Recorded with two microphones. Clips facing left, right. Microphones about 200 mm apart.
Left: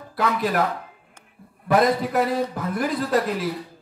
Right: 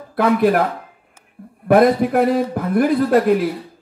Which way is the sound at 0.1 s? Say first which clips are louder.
Right 9 dB; 55° right (ahead or behind).